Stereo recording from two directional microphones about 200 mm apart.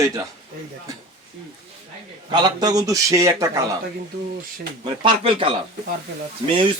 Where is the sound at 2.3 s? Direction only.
20° right (ahead or behind).